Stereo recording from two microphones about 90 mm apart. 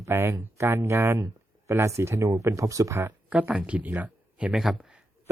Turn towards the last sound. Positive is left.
turn(degrees=-5)  # may be behind; listen again after turning